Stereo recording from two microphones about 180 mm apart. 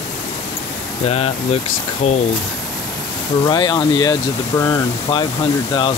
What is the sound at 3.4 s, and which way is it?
Speech, 25° left (ahead or behind).